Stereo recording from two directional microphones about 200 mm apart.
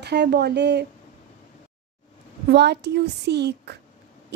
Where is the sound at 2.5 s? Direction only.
55° right (ahead or behind).